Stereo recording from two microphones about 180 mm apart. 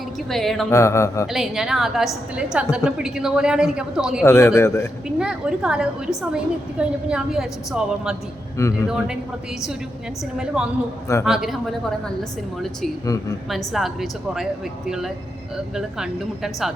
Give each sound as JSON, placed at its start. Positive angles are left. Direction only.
{"t": 0.3, "sound": "a woman's voice", "side_deg": 0}
{"t": 0.7, "sound": "speech", "side_deg": 15}
{"t": 1.3, "sound": "a woman's voice", "side_deg": 0}
{"t": 4.3, "sound": "speech", "side_deg": 15}
{"t": 5.0, "sound": "a woman's voice", "side_deg": -5}
{"t": 8.6, "sound": "speech", "side_deg": 15}
{"t": 10.3, "sound": "a woman's voice", "side_deg": -5}
{"t": 13.5, "sound": "a woman's voice", "side_deg": 0}